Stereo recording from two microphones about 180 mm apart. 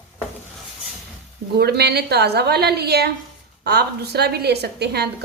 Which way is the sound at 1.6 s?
65° right (ahead or behind).